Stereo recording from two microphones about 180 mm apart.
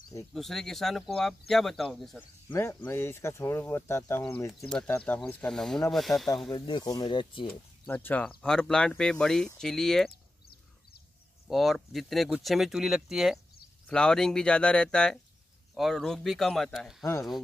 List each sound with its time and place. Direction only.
0.3 s speech: centre (ahead or behind)
2.5 s speech: 15° left (ahead or behind)
6.5 s speech: 25° left (ahead or behind)
7.8 s speech: 10° left (ahead or behind)
11.4 s speech: centre (ahead or behind)